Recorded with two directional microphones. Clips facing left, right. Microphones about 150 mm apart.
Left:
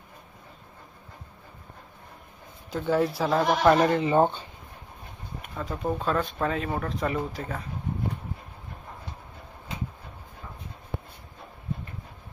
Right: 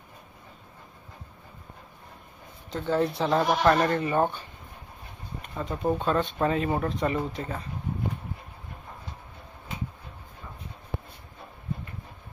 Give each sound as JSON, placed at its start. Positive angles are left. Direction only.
{"t": 2.6, "sound": "speech", "side_deg": 5}
{"t": 3.6, "sound": "speech", "side_deg": 15}
{"t": 5.6, "sound": "speech", "side_deg": 0}